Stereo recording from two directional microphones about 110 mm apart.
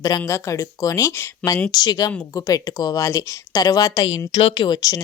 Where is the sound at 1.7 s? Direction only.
40° left (ahead or behind).